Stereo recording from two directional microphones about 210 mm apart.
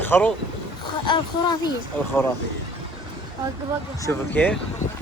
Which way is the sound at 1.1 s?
20° left (ahead or behind).